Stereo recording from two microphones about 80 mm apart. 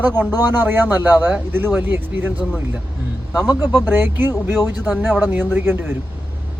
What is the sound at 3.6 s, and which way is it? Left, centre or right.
A man's voice, right.